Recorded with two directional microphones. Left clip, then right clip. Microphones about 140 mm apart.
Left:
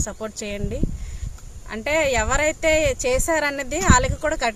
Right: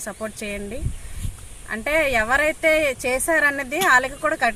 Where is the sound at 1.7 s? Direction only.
50° left (ahead or behind).